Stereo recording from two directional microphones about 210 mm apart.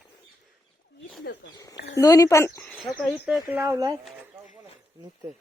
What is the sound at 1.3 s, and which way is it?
Speech, 50° left (ahead or behind).